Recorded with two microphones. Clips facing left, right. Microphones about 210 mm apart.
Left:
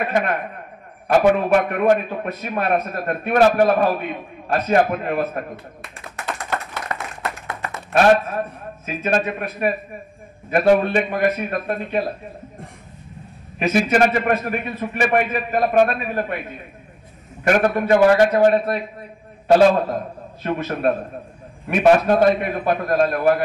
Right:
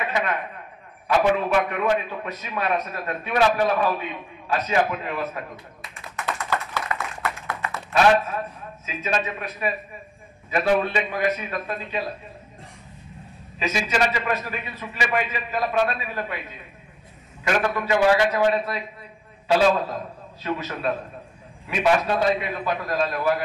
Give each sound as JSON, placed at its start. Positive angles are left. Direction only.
{"t": 0.0, "sound": "a man's voice", "side_deg": 50}
{"t": 6.1, "sound": "tap", "side_deg": 30}
{"t": 8.8, "sound": "a man's voice", "side_deg": 55}
{"t": 13.6, "sound": "a man's voice", "side_deg": 55}
{"t": 17.5, "sound": "a man's voice", "side_deg": 45}